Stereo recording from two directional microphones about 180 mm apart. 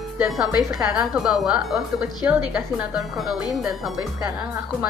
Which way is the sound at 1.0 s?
Centre (ahead or behind).